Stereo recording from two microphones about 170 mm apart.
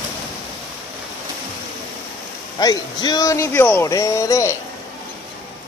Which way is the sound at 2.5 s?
25° left (ahead or behind).